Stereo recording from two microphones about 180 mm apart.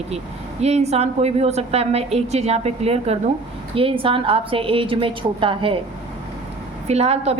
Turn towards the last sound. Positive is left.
turn(degrees=-35)  # may be behind; listen again after turning